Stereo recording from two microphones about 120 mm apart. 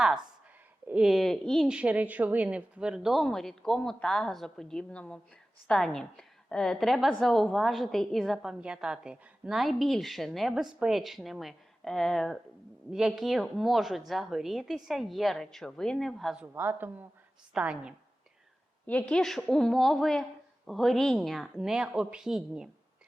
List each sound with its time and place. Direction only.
0.9 s a woman's voice: 5° right (ahead or behind)
1.6 s a woman's voice: 10° right (ahead or behind)
16.6 s a woman's voice: 15° right (ahead or behind)
18.9 s a woman's voice: 10° left (ahead or behind)